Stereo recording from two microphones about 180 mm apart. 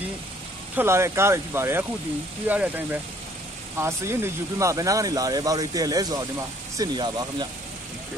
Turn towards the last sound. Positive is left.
turn(degrees=-25)  # may be behind; listen again after turning